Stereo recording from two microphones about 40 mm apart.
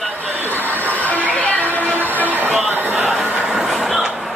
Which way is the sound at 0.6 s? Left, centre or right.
Right.